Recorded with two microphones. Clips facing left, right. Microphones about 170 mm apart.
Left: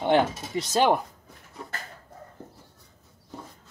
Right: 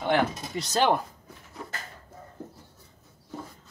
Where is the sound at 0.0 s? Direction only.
25° left (ahead or behind).